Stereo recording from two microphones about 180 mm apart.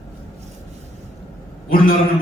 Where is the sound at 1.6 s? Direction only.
50° left (ahead or behind).